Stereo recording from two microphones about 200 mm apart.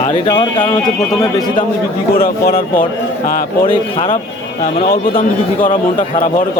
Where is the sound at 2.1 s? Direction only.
50° left (ahead or behind).